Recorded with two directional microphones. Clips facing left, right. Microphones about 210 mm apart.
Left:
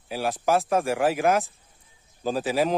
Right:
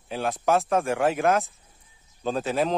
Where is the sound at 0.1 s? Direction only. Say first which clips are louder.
Even; centre (ahead or behind).